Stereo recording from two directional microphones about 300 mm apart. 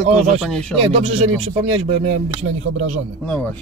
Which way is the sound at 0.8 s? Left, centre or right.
Centre.